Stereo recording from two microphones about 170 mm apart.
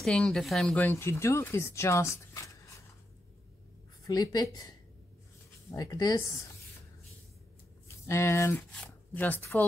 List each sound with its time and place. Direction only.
0.0 s speech: 5° left (ahead or behind)
4.0 s a woman's voice: 20° left (ahead or behind)
8.1 s speech: 15° left (ahead or behind)